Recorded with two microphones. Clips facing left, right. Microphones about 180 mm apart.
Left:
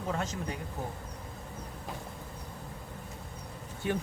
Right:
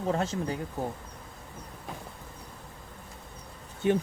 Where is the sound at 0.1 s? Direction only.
30° right (ahead or behind).